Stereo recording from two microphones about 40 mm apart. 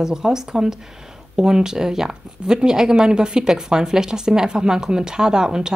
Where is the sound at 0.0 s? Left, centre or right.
Centre.